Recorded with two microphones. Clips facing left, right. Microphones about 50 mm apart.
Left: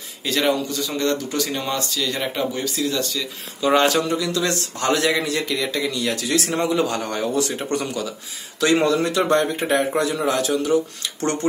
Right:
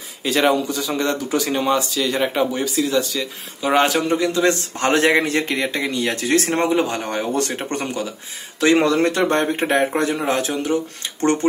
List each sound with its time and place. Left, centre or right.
0.2 s speech: right
4.1 s a man's voice: right
7.3 s a man's voice: right
8.8 s a man's voice: right